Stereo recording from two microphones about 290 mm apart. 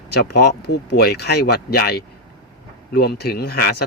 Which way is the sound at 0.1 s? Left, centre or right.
Left.